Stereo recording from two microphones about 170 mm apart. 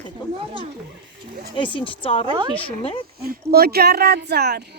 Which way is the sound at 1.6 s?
30° left (ahead or behind).